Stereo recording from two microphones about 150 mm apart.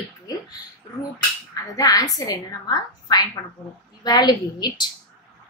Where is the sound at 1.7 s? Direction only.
25° left (ahead or behind).